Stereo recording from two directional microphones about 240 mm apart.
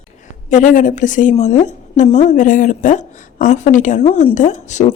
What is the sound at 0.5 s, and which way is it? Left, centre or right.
A woman's voice, left.